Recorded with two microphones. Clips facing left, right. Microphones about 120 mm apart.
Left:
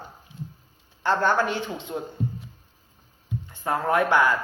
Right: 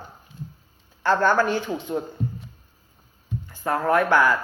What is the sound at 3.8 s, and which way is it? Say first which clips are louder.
Speech: right 2 dB; 20° left (ahead or behind).